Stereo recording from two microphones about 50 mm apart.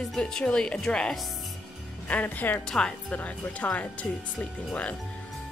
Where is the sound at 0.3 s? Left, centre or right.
Centre.